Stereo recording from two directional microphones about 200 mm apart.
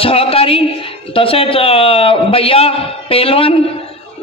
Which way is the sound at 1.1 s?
30° left (ahead or behind).